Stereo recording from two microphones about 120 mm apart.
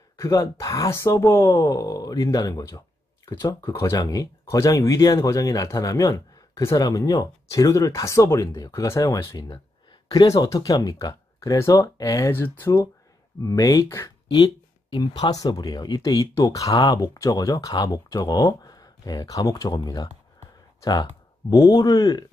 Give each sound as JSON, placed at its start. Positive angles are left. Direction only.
{"t": 0.2, "sound": "speech", "side_deg": 25}
{"t": 12.3, "sound": "speech", "side_deg": 15}
{"t": 13.4, "sound": "speech", "side_deg": 30}
{"t": 14.3, "sound": "a sound", "side_deg": 35}
{"t": 15.3, "sound": "speech", "side_deg": 35}